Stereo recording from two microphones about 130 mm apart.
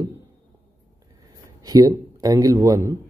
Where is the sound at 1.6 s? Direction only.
30° right (ahead or behind).